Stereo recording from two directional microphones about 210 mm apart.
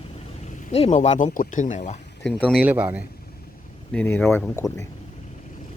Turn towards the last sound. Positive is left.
turn(degrees=10)  # may be behind; listen again after turning